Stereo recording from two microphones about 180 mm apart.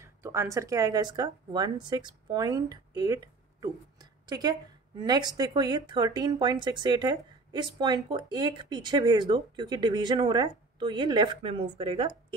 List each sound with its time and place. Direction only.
0.0 s speech: 15° right (ahead or behind); by 12.4 s 30° right (ahead or behind)